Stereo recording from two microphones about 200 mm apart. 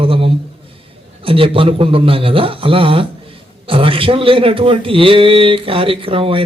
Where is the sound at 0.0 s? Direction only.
25° right (ahead or behind).